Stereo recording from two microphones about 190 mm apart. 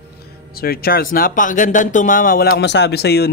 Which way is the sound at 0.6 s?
55° left (ahead or behind).